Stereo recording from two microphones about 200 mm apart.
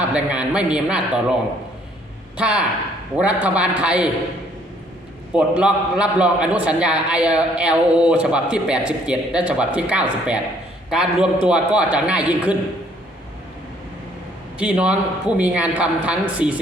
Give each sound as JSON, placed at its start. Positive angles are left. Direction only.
{"t": 0.0, "sound": "a man's voice", "side_deg": -5}
{"t": 2.4, "sound": "a man's voice", "side_deg": -5}
{"t": 5.3, "sound": "a man's voice", "side_deg": -5}
{"t": 14.6, "sound": "a man's voice", "side_deg": -5}